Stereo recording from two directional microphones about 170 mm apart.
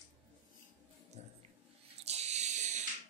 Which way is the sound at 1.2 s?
40° right (ahead or behind).